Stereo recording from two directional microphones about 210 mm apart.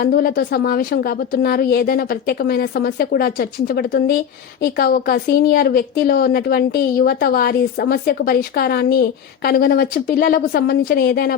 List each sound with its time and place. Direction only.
0.0 s a woman's voice: 50° left (ahead or behind)